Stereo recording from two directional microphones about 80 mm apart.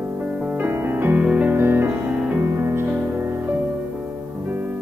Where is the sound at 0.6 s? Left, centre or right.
Right.